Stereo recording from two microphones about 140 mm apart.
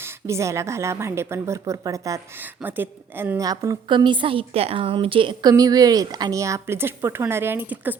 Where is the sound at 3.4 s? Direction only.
25° right (ahead or behind).